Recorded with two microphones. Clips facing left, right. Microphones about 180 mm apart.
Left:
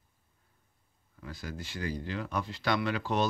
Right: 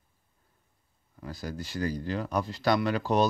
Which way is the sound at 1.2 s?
40° right (ahead or behind).